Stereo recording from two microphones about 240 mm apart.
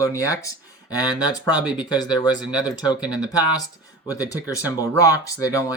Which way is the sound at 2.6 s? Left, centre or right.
Centre.